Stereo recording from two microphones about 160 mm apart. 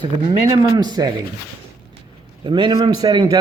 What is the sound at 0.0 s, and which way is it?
Speech, 20° right (ahead or behind).